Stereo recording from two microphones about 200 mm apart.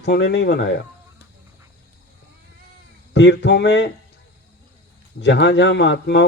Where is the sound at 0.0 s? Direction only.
55° left (ahead or behind).